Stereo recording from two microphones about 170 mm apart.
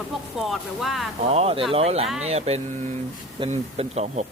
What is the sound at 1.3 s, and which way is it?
Speech, 35° right (ahead or behind).